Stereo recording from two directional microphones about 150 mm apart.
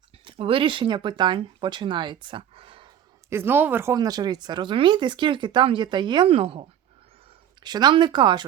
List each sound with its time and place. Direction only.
0.3 s speech: 35° right (ahead or behind)
3.2 s speech: 15° right (ahead or behind); by 6.7 s 40° right (ahead or behind)
7.6 s speech: 30° right (ahead or behind)